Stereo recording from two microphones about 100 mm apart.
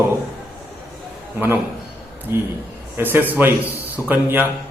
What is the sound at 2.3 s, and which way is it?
A man's voice, 25° right (ahead or behind).